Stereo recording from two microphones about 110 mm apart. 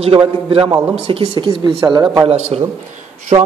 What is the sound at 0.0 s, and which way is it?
A man's voice, 65° right (ahead or behind).